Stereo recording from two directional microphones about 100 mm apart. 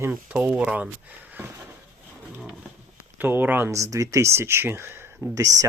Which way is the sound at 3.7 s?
30° right (ahead or behind).